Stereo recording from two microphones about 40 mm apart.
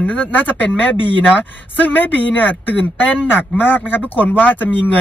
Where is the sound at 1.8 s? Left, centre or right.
Left.